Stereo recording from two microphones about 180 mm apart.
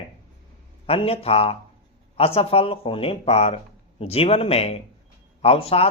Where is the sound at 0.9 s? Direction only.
30° left (ahead or behind).